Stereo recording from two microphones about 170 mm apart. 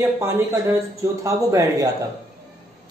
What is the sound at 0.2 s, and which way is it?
A man's voice, 15° right (ahead or behind).